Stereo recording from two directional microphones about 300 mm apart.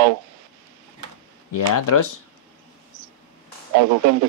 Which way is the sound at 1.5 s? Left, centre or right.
Left.